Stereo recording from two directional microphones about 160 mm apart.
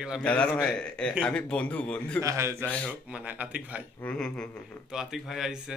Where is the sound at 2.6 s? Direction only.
5° left (ahead or behind).